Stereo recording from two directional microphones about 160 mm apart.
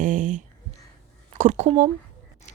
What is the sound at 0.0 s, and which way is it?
Speech, 55° right (ahead or behind).